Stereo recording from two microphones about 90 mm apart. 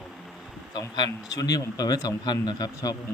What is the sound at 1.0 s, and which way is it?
Speech, 45° left (ahead or behind).